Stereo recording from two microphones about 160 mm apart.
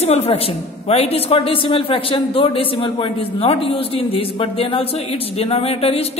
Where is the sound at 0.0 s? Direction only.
40° left (ahead or behind).